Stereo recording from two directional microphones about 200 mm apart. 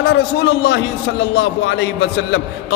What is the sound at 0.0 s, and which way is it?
A man's voice, 60° left (ahead or behind).